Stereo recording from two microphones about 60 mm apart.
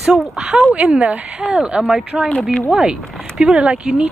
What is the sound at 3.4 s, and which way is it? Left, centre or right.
Speech, centre.